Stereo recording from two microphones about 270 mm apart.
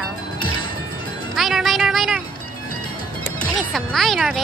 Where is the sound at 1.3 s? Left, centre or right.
Centre.